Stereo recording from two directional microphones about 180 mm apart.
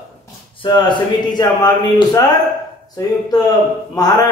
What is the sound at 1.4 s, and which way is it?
A man's voice, 20° left (ahead or behind).